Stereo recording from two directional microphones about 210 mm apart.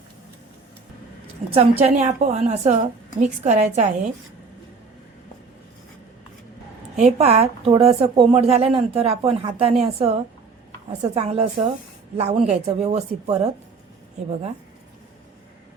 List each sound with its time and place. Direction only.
1.5 s a woman's voice: 30° right (ahead or behind)
6.9 s a woman's voice: 30° right (ahead or behind)